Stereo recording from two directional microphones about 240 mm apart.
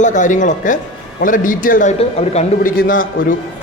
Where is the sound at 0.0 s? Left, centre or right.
Left.